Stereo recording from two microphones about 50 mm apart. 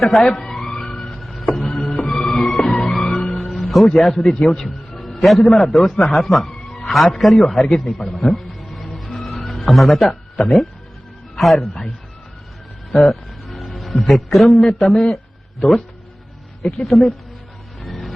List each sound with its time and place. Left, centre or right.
0.1 s a sound: centre
1.2 s music: centre
3.5 s a man's voice: centre
8.0 s music: centre
11.3 s a man's voice: centre
12.9 s speech: centre
16.8 s a man's voice: centre
17.7 s music: centre